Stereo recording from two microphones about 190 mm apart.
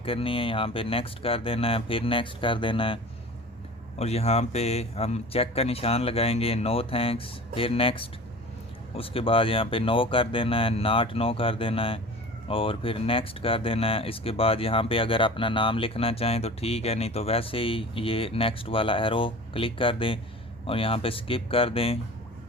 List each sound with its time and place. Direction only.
0.0 s speech: 30° left (ahead or behind)